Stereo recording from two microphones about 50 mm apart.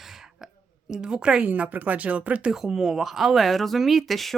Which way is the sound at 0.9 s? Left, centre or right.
Centre.